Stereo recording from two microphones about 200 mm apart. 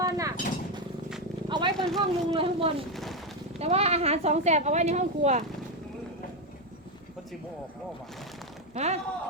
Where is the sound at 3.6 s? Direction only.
30° right (ahead or behind).